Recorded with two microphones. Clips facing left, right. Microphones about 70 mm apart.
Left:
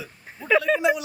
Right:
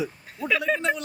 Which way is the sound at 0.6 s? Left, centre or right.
Centre.